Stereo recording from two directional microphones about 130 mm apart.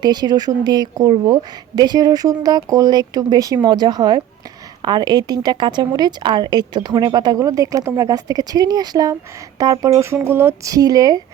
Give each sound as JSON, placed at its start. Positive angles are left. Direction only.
{"t": 0.0, "sound": "speech", "side_deg": -30}